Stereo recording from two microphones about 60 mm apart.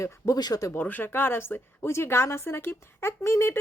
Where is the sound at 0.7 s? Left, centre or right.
Left.